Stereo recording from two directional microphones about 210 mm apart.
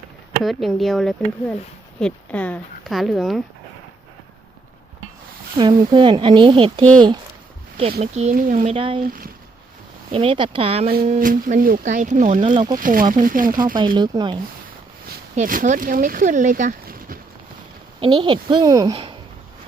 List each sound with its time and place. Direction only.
0.4 s speech: centre (ahead or behind)
5.5 s speech: 20° right (ahead or behind)
8.0 s speech: 30° right (ahead or behind)
8.7 s speech: 25° right (ahead or behind)
10.1 s speech: 25° right (ahead or behind)
11.2 s speech: 40° right (ahead or behind)
12.5 s speech: 20° right (ahead or behind)
12.8 s speech: 40° right (ahead or behind)
13.7 s speech: 20° right (ahead or behind)
15.1 s speech: 40° right (ahead or behind)
18.0 s speech: 20° right (ahead or behind)